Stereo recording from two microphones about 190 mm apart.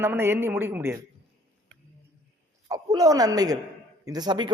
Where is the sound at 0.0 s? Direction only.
10° right (ahead or behind).